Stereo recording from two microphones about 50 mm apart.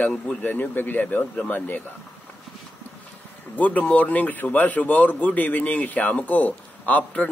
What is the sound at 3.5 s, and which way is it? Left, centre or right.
A man's voice, left.